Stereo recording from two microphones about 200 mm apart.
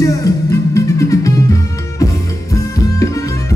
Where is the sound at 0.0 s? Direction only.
15° left (ahead or behind).